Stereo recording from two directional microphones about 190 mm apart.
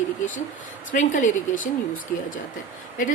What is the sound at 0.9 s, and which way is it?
Speech, 40° left (ahead or behind).